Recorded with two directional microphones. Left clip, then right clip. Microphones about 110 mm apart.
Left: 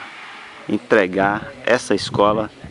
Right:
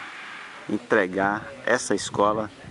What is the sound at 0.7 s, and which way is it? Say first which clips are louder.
Speech: left 6 dB; centre (ahead or behind).